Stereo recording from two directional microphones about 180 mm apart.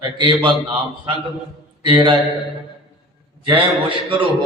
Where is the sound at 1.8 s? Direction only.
25° right (ahead or behind).